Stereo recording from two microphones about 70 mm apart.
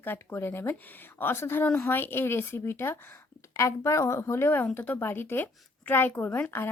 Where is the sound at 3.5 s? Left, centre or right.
Left.